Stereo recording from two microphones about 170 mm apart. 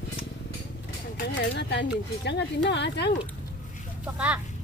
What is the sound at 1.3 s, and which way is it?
Speech, 90° left.